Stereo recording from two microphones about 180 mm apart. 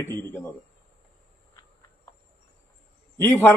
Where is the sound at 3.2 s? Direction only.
10° left (ahead or behind).